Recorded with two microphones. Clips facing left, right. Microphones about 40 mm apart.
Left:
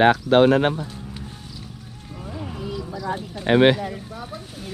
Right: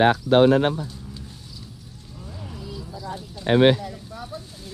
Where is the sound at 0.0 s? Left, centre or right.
Left.